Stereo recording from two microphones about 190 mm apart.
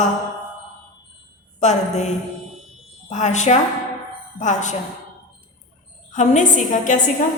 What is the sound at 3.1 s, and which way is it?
A woman's voice, 40° left (ahead or behind).